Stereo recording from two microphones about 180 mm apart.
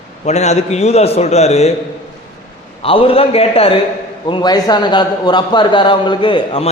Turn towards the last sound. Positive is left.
turn(degrees=30)  # may be behind; listen again after turning